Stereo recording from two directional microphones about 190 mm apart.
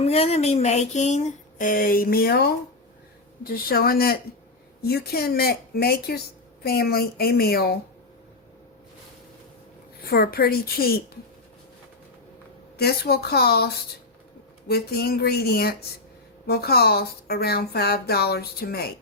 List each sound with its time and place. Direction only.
0.0 s a woman's voice: 35° left (ahead or behind); by 7.8 s 55° left (ahead or behind)
10.1 s a woman's voice: 55° left (ahead or behind)
12.7 s speech: 55° left (ahead or behind)
14.7 s speech: 55° left (ahead or behind)